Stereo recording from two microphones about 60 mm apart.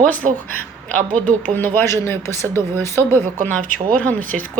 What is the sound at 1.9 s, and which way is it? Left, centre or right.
Speech, left.